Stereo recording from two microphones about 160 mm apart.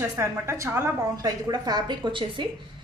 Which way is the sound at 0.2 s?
15° right (ahead or behind).